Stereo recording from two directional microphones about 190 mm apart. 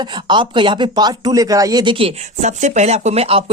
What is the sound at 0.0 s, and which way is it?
Speech, 25° right (ahead or behind).